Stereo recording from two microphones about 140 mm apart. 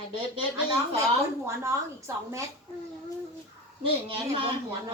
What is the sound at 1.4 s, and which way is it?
Speech, 20° right (ahead or behind).